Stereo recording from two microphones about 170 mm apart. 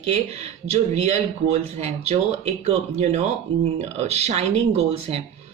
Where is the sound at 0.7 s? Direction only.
40° right (ahead or behind).